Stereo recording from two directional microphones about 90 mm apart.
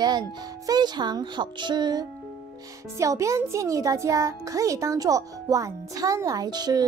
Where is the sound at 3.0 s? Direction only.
35° right (ahead or behind).